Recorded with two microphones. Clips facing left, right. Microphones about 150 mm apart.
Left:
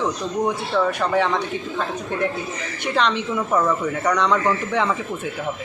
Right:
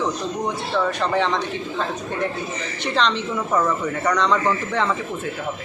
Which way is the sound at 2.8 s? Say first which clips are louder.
Left 1 dB; 10° left (ahead or behind).